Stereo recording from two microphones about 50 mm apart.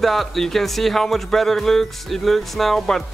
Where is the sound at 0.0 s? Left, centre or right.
Centre.